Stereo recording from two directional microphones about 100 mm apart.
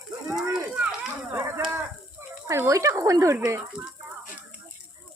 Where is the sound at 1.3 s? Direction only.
30° right (ahead or behind).